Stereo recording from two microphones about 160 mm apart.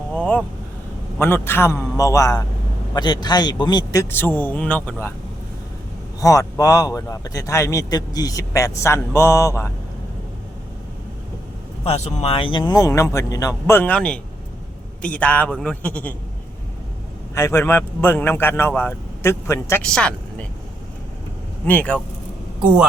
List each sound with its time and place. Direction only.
0.2 s a man's voice: 10° left (ahead or behind); by 4.0 s 25° left (ahead or behind)
4.1 s a man's voice: 10° left (ahead or behind)
6.1 s a man's voice: 20° left (ahead or behind)
11.9 s a man's voice: 45° left (ahead or behind); by 16.1 s 10° left (ahead or behind)
17.3 s a man's voice: 15° left (ahead or behind)
19.8 s speech: 5° left (ahead or behind)
21.7 s a man's voice: 10° left (ahead or behind)
22.6 s speech: 5° right (ahead or behind)